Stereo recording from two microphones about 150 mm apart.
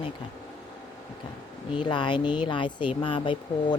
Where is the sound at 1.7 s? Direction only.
30° left (ahead or behind).